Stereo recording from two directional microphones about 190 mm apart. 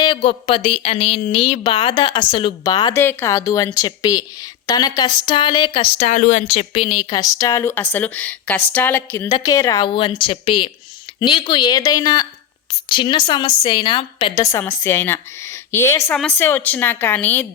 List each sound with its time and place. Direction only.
0.0 s speech: 25° left (ahead or behind)
6.1 s a woman's voice: 40° left (ahead or behind); by 17.4 s 10° left (ahead or behind)